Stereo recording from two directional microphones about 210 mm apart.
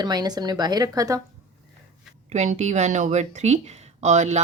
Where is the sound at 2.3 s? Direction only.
35° right (ahead or behind).